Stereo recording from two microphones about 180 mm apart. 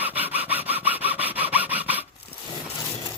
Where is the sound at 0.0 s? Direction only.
10° right (ahead or behind).